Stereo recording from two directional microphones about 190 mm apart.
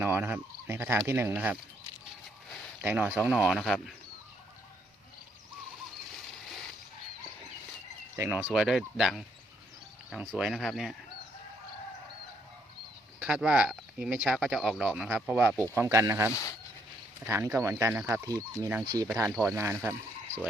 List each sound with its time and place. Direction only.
0.0 s a sound: 10° right (ahead or behind)
1.0 s speech: 10° right (ahead or behind)
2.8 s speech: 10° right (ahead or behind)
8.1 s speech: 10° right (ahead or behind)
13.1 s speech: 5° right (ahead or behind)
16.3 s speech: 15° left (ahead or behind)
17.2 s speech: 15° right (ahead or behind)